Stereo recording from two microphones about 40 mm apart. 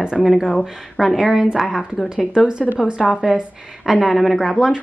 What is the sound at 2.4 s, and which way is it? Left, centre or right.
Speech, right.